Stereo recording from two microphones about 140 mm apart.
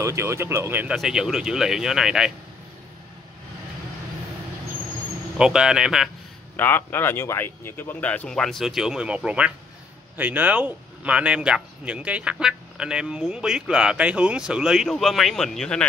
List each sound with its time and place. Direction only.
0.0 s speech: 20° right (ahead or behind)
0.9 s speech: 5° right (ahead or behind)
5.4 s speech: 5° right (ahead or behind)
6.5 s speech: 15° left (ahead or behind)